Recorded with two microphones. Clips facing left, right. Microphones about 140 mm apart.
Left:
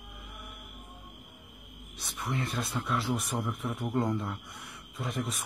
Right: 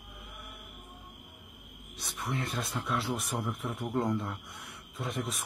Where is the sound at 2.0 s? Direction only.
Centre (ahead or behind).